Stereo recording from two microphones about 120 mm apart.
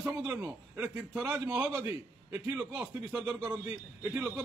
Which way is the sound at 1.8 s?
20° right (ahead or behind).